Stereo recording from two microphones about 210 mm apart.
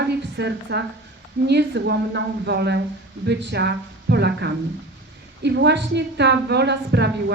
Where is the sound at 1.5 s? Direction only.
55° right (ahead or behind).